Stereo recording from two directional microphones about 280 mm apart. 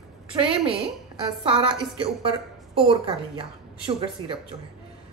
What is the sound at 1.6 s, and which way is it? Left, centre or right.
A woman's voice, centre.